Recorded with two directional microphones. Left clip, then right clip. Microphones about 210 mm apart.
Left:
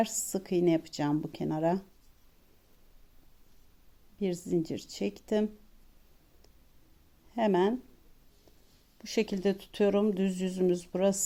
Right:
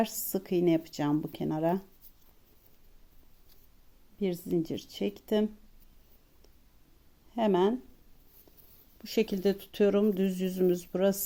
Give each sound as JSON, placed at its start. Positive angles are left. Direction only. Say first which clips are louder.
{"t": 0.0, "sound": "speech", "louder": "even", "side_deg": 0}
{"t": 4.2, "sound": "speech", "louder": "even", "side_deg": 0}
{"t": 7.3, "sound": "speech", "louder": "right 1 dB", "side_deg": 0}
{"t": 9.0, "sound": "speech", "louder": "right 1 dB", "side_deg": 0}